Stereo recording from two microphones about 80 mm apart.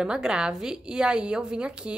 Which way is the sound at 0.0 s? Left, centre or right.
Centre.